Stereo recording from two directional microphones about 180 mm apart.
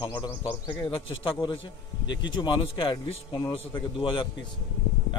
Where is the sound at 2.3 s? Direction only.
25° left (ahead or behind).